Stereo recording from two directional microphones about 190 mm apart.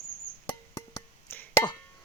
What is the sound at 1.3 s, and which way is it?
Music, 10° left (ahead or behind).